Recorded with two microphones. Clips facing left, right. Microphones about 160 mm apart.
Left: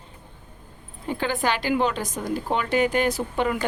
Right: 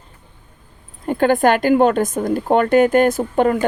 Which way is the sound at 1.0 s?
50° right (ahead or behind).